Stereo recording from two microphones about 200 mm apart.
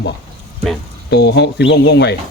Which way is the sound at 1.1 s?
55° left (ahead or behind).